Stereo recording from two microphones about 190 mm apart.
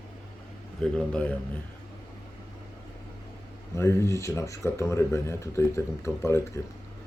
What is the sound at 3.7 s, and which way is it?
Speech, 15° left (ahead or behind).